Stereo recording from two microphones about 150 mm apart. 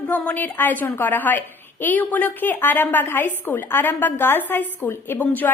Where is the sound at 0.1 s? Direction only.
10° left (ahead or behind).